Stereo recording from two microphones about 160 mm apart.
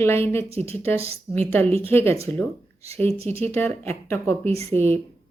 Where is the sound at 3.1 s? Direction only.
40° right (ahead or behind).